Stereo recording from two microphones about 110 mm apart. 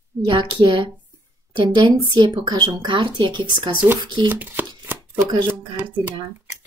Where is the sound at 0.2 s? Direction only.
50° right (ahead or behind).